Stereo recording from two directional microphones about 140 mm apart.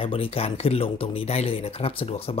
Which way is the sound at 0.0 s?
40° left (ahead or behind).